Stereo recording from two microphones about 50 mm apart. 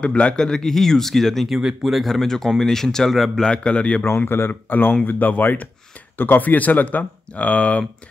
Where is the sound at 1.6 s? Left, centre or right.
Centre.